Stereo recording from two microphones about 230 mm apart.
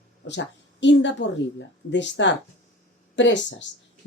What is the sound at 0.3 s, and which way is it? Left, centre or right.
A woman's voice, left.